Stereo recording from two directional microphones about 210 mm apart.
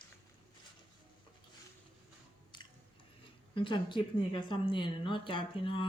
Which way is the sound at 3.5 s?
25° left (ahead or behind).